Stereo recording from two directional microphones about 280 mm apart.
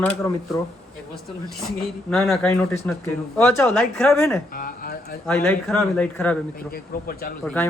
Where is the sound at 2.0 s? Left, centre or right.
Centre.